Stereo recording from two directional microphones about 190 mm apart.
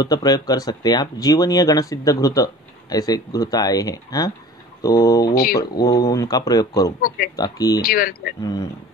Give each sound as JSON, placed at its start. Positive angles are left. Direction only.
{"t": 0.0, "sound": "speech", "side_deg": 20}
{"t": 5.3, "sound": "speech", "side_deg": 50}
{"t": 5.6, "sound": "speech", "side_deg": 20}
{"t": 7.8, "sound": "speech", "side_deg": 50}
{"t": 8.4, "sound": "speech", "side_deg": 20}